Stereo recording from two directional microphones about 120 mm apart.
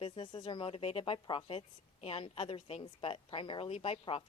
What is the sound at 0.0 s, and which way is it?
A woman's voice, 45° left (ahead or behind).